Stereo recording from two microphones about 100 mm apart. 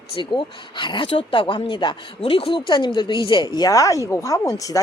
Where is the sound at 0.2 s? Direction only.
55° left (ahead or behind).